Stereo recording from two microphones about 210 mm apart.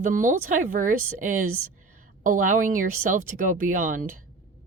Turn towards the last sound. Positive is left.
turn(degrees=-40)  # may be behind; listen again after turning